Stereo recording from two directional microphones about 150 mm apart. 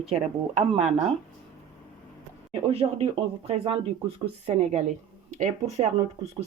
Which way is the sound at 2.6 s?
40° right (ahead or behind).